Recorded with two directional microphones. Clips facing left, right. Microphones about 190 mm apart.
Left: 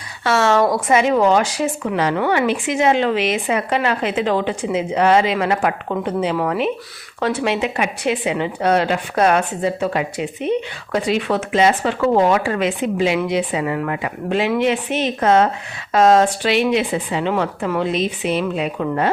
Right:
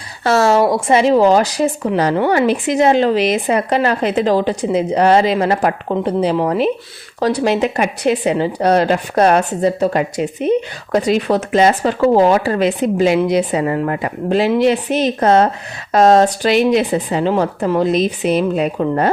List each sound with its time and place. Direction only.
0.3 s a woman's voice: 35° right (ahead or behind)